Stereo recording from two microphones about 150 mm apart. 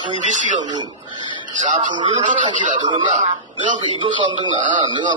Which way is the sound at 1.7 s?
35° right (ahead or behind).